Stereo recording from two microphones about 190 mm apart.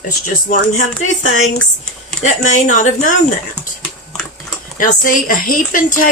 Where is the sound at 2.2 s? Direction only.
40° left (ahead or behind).